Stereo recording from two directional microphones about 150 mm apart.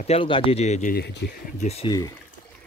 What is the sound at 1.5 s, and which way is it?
Speech, 45° left (ahead or behind).